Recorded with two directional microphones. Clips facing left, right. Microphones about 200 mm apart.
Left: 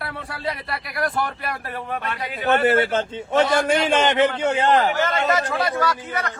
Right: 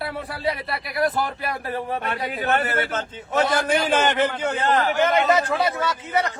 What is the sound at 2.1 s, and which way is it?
Speech, 55° right (ahead or behind).